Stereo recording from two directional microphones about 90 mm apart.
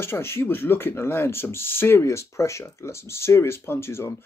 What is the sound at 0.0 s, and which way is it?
Speech, 25° left (ahead or behind).